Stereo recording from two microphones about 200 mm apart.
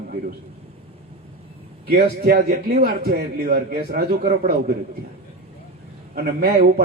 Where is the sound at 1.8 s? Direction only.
50° right (ahead or behind).